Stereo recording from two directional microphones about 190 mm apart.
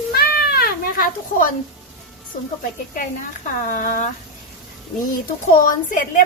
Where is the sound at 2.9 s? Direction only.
45° left (ahead or behind).